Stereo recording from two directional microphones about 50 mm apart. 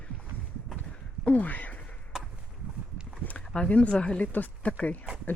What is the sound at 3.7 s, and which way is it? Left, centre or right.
Speech, left.